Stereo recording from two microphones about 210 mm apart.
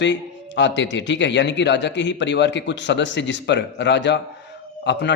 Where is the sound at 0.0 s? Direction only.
60° left (ahead or behind).